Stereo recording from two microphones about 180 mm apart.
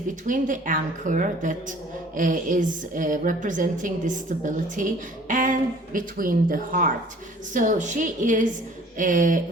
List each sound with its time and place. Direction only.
0.3 s a woman's voice: 45° right (ahead or behind)